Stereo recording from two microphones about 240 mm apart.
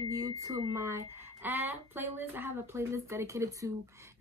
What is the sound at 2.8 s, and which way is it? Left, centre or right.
Speech, centre.